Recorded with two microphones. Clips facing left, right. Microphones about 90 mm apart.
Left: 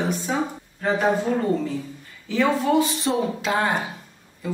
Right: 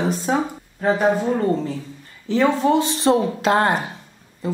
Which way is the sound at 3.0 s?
60° right (ahead or behind).